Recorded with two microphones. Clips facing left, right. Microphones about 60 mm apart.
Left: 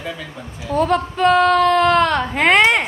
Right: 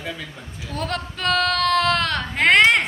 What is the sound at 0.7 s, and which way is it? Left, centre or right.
Speech, centre.